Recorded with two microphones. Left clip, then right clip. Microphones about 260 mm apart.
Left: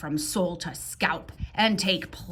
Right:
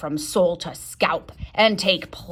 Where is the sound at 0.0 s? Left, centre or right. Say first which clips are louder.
Right 8 dB; right.